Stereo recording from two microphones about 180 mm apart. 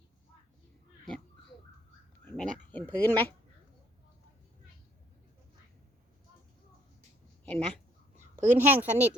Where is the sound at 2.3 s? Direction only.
5° left (ahead or behind).